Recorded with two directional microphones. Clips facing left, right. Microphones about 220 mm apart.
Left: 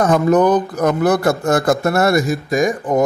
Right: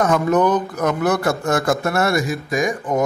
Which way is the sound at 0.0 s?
35° left (ahead or behind).